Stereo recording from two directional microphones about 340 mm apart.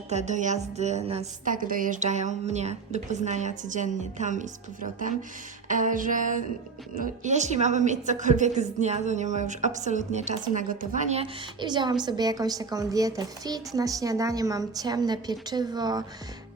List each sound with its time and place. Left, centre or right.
0.1 s a woman's voice: centre